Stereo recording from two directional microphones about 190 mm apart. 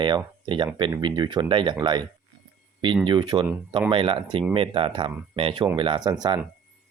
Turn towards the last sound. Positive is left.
turn(degrees=-20)  # may be behind; listen again after turning